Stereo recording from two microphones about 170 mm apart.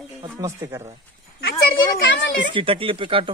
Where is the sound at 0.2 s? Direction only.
20° right (ahead or behind).